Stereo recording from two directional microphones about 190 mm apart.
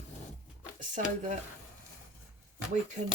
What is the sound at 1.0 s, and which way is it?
Speech, 40° right (ahead or behind).